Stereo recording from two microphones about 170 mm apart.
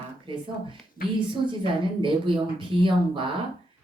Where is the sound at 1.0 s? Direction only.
60° left (ahead or behind).